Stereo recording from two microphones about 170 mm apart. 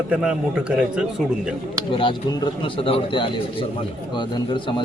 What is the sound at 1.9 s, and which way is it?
Speech, 30° left (ahead or behind).